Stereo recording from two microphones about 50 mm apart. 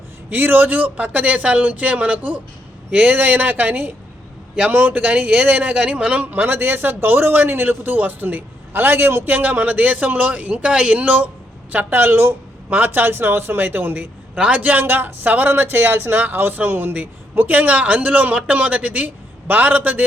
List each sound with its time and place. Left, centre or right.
0.3 s a man's voice: right
6.4 s a man's voice: right
9.3 s a man's voice: right
10.7 s speech: centre
10.9 s a man's voice: right
14.3 s speech: right
14.6 s a man's voice: right